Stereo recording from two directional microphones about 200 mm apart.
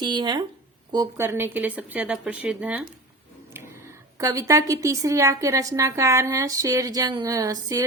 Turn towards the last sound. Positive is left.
turn(degrees=-15)  # may be behind; listen again after turning